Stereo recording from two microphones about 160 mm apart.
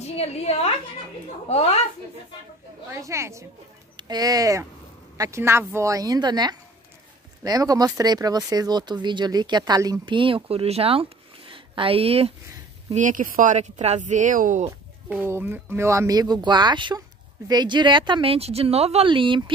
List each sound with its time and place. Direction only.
0.0 s a woman's voice: 40° left (ahead or behind)
2.9 s a woman's voice: 20° right (ahead or behind); by 12.4 s 35° right (ahead or behind)
12.9 s speech: 55° right (ahead or behind)
15.0 s a woman's voice: 15° right (ahead or behind); by 19.5 s 30° right (ahead or behind)